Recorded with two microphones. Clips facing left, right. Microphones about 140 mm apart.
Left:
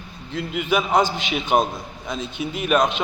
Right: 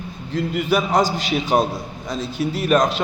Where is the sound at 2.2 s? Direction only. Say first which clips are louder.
Right 5 dB; 35° right (ahead or behind).